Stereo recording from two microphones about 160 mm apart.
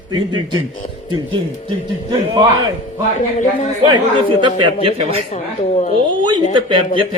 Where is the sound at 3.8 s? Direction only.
30° right (ahead or behind).